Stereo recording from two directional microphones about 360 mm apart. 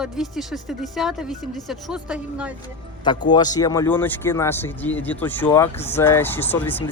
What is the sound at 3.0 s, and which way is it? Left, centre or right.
Speech, centre.